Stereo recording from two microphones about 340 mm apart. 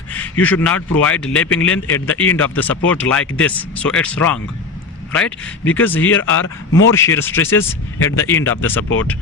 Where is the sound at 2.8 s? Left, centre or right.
Centre.